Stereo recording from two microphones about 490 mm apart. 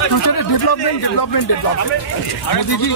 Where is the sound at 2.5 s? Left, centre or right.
Left.